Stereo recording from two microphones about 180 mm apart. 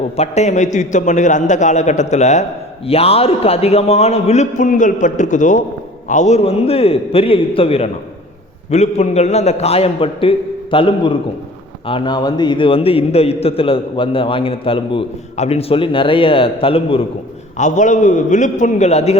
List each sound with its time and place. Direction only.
0.2 s a man's voice: 40° left (ahead or behind)
17.6 s a man's voice: 45° left (ahead or behind)